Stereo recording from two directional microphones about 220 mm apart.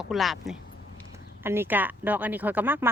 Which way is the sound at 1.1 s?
10° right (ahead or behind).